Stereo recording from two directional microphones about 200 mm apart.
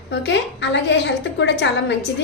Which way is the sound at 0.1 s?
60° left (ahead or behind).